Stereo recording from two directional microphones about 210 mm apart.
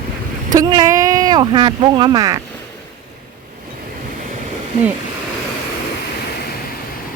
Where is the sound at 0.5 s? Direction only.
15° right (ahead or behind).